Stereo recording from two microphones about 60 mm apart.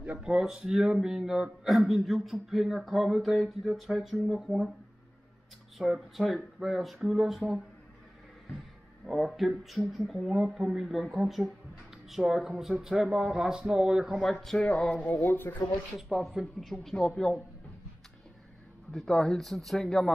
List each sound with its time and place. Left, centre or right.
0.2 s a man's voice: centre
5.8 s a man's voice: centre
9.0 s a man's voice: centre
14.3 s speech: centre
15.0 s speech: left
16.0 s a man's voice: centre
18.9 s a man's voice: centre